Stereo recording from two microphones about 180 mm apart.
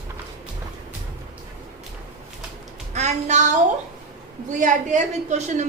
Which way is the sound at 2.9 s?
40° right (ahead or behind).